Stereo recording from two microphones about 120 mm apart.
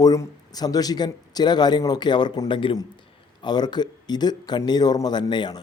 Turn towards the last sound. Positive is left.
turn(degrees=35)  # may be behind; listen again after turning